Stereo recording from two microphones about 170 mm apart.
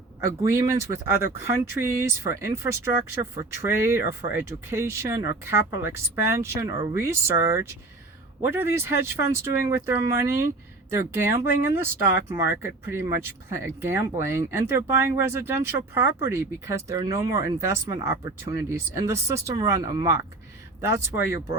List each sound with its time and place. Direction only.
0.4 s speech: 15° right (ahead or behind)